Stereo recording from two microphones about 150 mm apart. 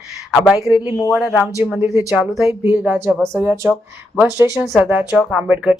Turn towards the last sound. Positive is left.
turn(degrees=-5)  # may be behind; listen again after turning